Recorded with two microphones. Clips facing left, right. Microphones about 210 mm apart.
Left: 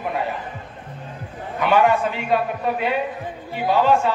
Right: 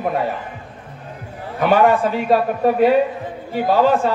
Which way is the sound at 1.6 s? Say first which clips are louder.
Right 3 dB; 50° right (ahead or behind).